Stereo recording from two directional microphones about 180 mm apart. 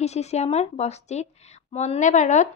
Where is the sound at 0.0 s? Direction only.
35° left (ahead or behind).